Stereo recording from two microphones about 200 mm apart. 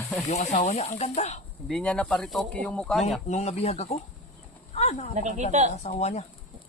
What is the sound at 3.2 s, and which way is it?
Speech, 35° left (ahead or behind).